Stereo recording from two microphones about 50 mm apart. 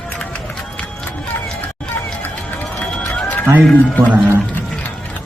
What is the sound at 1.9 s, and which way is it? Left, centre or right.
Run, left.